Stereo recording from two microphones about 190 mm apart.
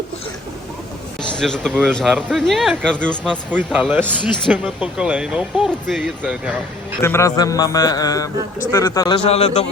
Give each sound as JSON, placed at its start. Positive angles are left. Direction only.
{"t": 1.2, "sound": "a sound", "side_deg": 5}
{"t": 1.9, "sound": "speech", "side_deg": 0}
{"t": 3.5, "sound": "speech", "side_deg": -10}
{"t": 7.0, "sound": "a man's voice", "side_deg": 15}